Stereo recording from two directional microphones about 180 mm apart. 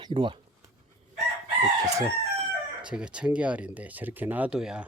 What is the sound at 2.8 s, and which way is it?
Speech, 5° right (ahead or behind).